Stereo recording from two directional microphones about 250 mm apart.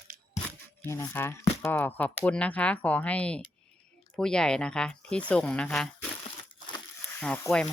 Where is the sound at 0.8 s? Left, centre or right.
Centre.